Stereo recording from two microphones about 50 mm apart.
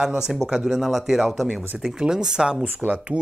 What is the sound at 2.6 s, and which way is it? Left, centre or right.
Speech, right.